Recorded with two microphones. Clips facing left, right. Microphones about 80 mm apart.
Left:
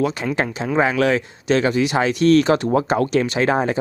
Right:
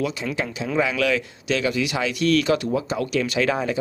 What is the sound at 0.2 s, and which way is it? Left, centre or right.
Speech, left.